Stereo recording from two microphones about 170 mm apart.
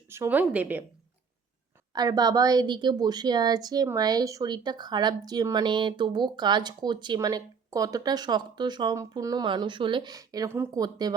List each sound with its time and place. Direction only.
0.1 s speech: 10° right (ahead or behind)
1.9 s a woman's voice: 25° right (ahead or behind)